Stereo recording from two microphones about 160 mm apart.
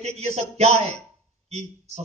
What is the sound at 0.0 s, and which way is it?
Speech, 40° right (ahead or behind).